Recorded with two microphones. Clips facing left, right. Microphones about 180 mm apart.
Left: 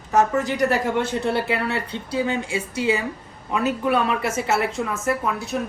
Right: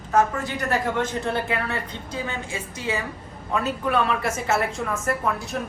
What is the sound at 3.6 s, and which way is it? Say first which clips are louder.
Speech: left 4 dB; 5° left (ahead or behind).